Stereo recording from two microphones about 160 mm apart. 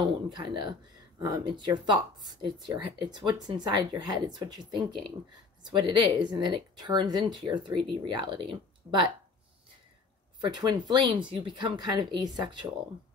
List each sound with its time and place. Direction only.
0.0 s speech: 30° right (ahead or behind)
10.4 s speech: 25° right (ahead or behind)